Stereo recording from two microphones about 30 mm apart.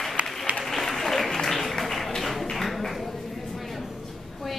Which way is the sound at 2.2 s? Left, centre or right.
Centre.